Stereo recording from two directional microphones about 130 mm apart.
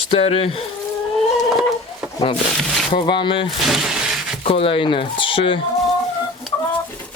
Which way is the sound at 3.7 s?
5° right (ahead or behind).